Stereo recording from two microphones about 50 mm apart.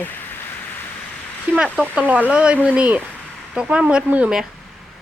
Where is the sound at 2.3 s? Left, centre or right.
Right.